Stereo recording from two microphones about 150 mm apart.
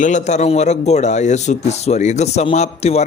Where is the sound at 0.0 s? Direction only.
55° left (ahead or behind).